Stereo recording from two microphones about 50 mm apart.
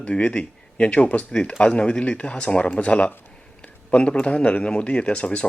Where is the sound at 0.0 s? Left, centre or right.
Left.